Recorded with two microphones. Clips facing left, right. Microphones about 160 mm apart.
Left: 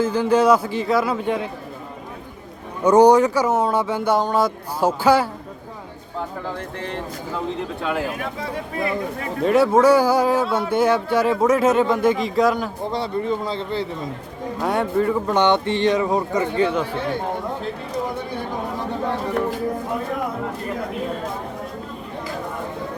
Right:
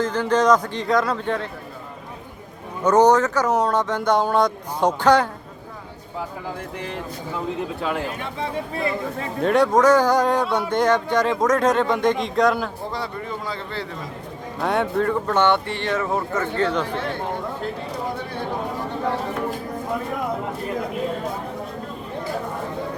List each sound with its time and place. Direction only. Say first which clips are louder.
0.0 s speech: left 2 dB; 10° left (ahead or behind)
2.8 s speech: left 3 dB; 10° left (ahead or behind)
7.8 s speech: left 3 dB; centre (ahead or behind)
9.4 s speech: left 2 dB; 5° left (ahead or behind)
12.9 s a man's voice: left 6 dB; 25° left (ahead or behind)
14.6 s speech: left 1 dB; centre (ahead or behind)
15.3 s speech: left 2 dB; 15° left (ahead or behind)